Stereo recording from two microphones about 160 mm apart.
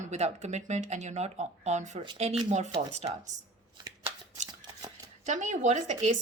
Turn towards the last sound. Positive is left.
turn(degrees=-45)  # may be behind; listen again after turning